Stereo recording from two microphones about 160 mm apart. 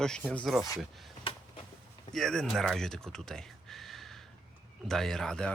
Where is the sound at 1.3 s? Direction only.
35° left (ahead or behind).